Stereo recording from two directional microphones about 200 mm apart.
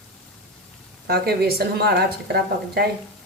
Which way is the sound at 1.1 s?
50° right (ahead or behind).